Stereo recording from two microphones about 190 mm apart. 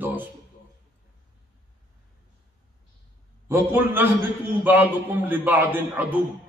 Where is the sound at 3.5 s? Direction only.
10° right (ahead or behind).